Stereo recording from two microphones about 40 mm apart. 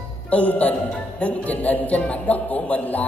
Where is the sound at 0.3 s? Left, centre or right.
Left.